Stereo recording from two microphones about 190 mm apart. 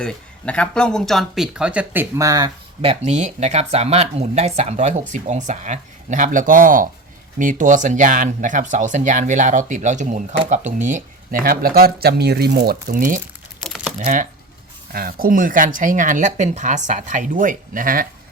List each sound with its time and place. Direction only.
0.0 s speech: 5° left (ahead or behind); by 2.5 s 20° right (ahead or behind)
2.8 s speech: 35° right (ahead or behind)
13.7 s typing: centre (ahead or behind)
14.0 s speech: 45° right (ahead or behind)